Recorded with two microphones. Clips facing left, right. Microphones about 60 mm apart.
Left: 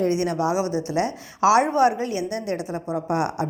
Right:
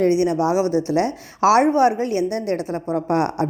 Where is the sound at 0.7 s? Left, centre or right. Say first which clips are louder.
Right 6 dB; left.